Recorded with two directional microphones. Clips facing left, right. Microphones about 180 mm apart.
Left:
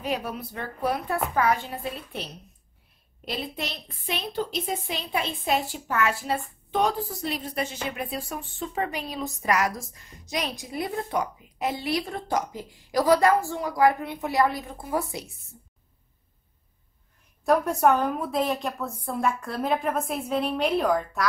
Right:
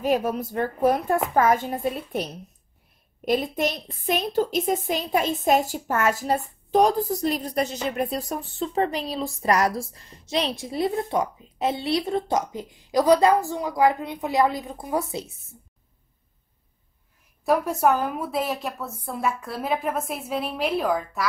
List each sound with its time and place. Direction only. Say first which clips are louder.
0.0 s speech: right 7 dB; 45° right (ahead or behind)
3.3 s a woman's voice: right 9 dB; 45° right (ahead or behind); by 15.1 s 20° right (ahead or behind)
17.5 s a woman's voice: even; centre (ahead or behind)